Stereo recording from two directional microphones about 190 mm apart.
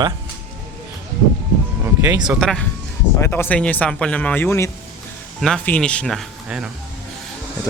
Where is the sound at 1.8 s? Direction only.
15° right (ahead or behind).